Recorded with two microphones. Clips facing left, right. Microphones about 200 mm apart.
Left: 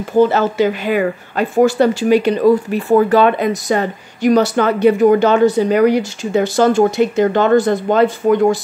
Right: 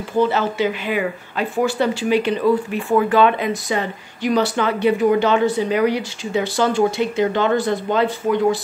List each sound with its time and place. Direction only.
0.2 s speech: 45° left (ahead or behind)